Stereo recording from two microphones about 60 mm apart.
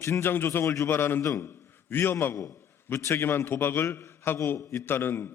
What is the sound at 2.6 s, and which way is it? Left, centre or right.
A man's voice, left.